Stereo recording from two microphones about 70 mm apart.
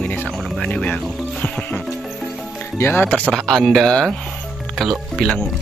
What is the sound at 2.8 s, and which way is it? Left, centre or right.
Speech, left.